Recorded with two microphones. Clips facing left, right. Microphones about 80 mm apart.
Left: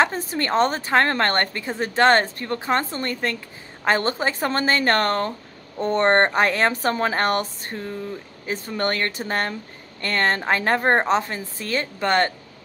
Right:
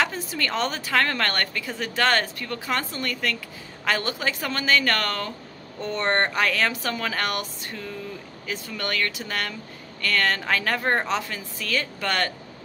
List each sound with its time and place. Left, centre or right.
0.0 s a woman's voice: left